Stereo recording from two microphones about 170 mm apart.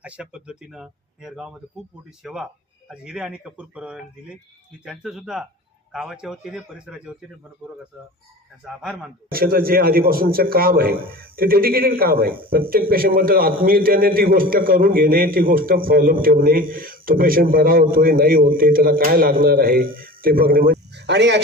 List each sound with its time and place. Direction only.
0.0 s speech: 5° right (ahead or behind)
9.3 s a man's voice: 60° right (ahead or behind); by 21.4 s 90° right